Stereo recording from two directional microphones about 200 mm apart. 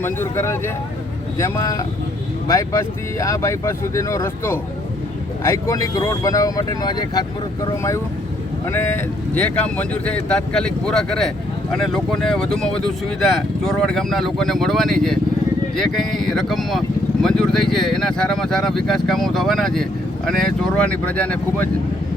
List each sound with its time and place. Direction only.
0.0 s speech: 10° left (ahead or behind)
3.2 s speech: 15° left (ahead or behind)
9.3 s speech: 5° left (ahead or behind)